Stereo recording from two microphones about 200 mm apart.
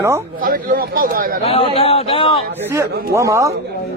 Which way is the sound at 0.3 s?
45° right (ahead or behind).